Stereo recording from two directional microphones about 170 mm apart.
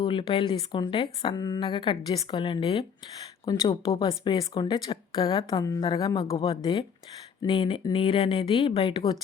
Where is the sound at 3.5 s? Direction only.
20° left (ahead or behind).